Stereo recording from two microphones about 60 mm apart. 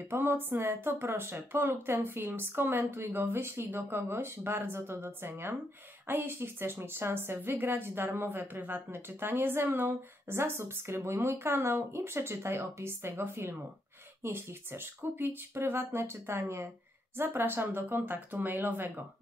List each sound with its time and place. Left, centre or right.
0.1 s speech: right